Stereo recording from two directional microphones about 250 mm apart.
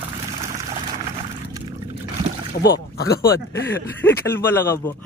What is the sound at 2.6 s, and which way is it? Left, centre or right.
Speech, left.